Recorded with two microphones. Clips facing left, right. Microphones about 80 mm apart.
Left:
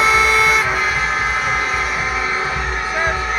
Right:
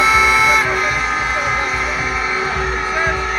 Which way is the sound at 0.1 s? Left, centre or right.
Right.